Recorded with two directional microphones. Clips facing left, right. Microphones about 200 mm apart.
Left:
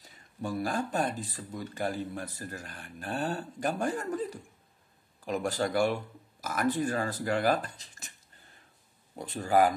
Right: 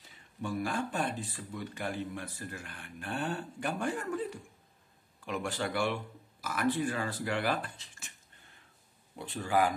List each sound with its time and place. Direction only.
0.0 s speech: 40° left (ahead or behind)
9.1 s speech: 40° left (ahead or behind)